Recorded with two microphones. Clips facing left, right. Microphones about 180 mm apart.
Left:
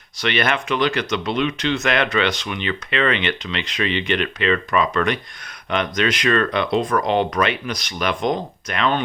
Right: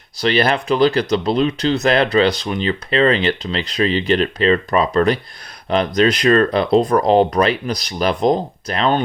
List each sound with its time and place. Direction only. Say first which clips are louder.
0.2 s speech: right 5 dB; 35° right (ahead or behind)